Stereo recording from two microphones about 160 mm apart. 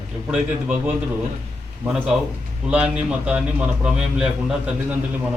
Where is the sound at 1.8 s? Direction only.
5° right (ahead or behind).